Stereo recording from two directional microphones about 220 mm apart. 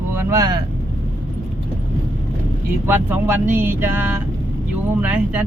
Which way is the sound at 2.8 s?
10° right (ahead or behind).